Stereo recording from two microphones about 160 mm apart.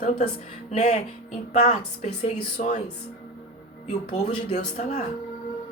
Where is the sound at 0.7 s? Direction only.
45° left (ahead or behind).